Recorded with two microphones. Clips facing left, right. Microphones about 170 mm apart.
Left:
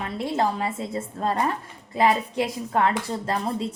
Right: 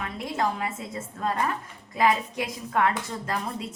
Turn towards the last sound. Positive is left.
turn(degrees=30)  # may be behind; listen again after turning